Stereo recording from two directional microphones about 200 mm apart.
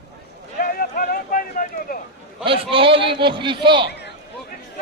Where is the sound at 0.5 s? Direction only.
45° left (ahead or behind).